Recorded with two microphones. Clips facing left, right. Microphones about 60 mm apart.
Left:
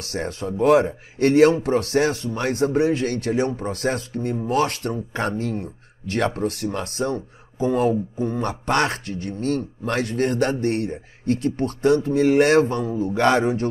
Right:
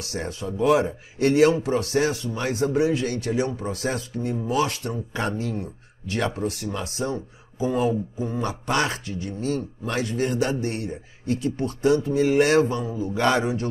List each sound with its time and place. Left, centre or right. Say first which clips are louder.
0.0 s speech: left 3 dB; left